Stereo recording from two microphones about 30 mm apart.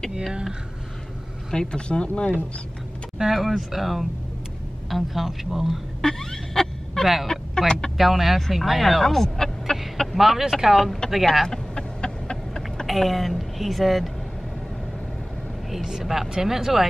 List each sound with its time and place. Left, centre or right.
0.3 s speech: right
1.5 s speech: left
1.9 s speech: left
3.3 s speech: centre
6.0 s a sound: centre
7.2 s vehicle: left
8.0 s speech: centre
9.0 s a sound: centre
10.1 s speech: centre
11.0 s vehicle: left
11.4 s a sound: left
12.8 s speech: centre
15.7 s speech: centre